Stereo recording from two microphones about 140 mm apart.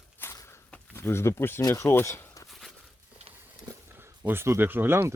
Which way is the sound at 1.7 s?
20° left (ahead or behind).